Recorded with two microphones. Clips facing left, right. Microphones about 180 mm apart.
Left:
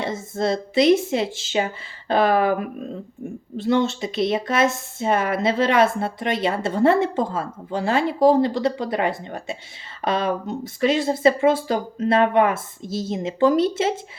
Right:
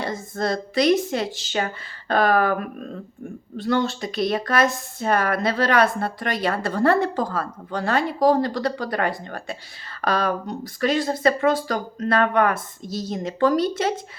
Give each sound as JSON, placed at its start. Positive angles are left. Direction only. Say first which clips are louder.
{"t": 0.0, "sound": "speech", "louder": "left 2 dB", "side_deg": 25}